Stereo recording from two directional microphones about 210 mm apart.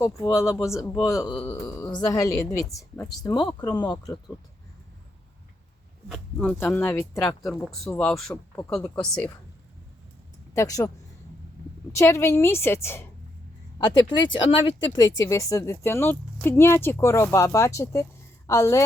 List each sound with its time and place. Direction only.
0.0 s a woman's voice: 15° left (ahead or behind)
6.1 s a woman's voice: 5° left (ahead or behind)
10.5 s a woman's voice: 15° left (ahead or behind)